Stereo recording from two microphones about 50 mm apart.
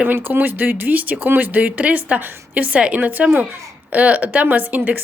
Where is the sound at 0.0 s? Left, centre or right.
Right.